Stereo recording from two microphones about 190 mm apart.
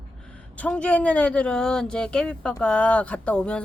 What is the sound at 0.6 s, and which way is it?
Speech, 5° left (ahead or behind).